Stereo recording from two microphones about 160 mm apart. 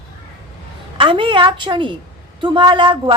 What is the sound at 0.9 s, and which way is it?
Speech, 30° right (ahead or behind).